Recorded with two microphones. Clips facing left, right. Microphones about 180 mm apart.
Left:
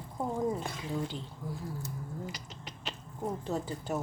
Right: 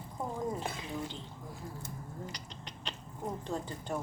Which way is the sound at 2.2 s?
5° left (ahead or behind).